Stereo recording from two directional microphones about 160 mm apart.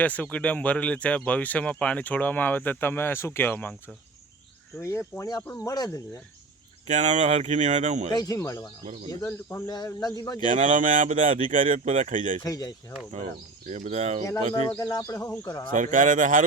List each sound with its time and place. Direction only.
0.0 s a man's voice: 10° left (ahead or behind)
6.8 s speech: 50° right (ahead or behind)
8.1 s a man's voice: 25° left (ahead or behind)
10.5 s speech: 55° right (ahead or behind)
12.4 s a man's voice: 25° left (ahead or behind)
13.7 s speech: 45° right (ahead or behind)
14.8 s a man's voice: 20° left (ahead or behind)
15.7 s speech: 55° right (ahead or behind)